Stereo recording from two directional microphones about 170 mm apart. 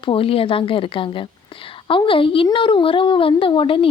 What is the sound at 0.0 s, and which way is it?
Speech, 30° left (ahead or behind).